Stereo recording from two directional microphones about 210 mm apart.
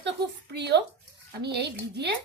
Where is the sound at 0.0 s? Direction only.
55° right (ahead or behind).